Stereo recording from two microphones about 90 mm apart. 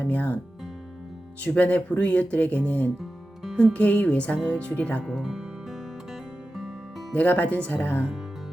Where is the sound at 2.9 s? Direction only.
Centre (ahead or behind).